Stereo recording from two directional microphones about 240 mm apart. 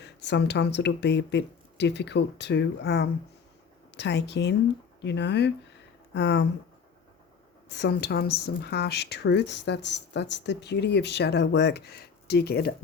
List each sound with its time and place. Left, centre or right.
0.0 s speech: left
7.7 s speech: left